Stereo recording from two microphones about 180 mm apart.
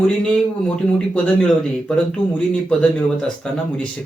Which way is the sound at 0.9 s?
5° left (ahead or behind).